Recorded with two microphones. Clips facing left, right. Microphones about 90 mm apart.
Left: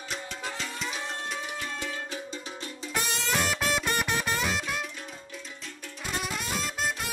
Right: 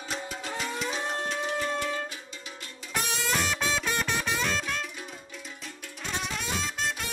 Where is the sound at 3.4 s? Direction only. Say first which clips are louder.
Left 1 dB; centre (ahead or behind).